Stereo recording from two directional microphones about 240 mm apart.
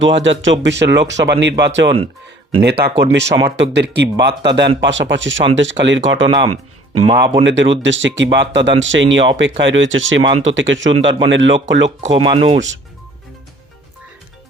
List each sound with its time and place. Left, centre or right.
0.0 s speech: right
6.2 s speech: centre
7.4 s speech: right
12.1 s speech: right